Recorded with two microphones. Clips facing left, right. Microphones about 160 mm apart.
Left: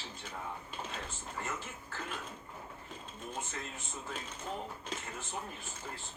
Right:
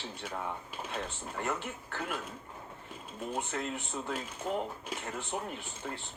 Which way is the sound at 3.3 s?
65° right (ahead or behind).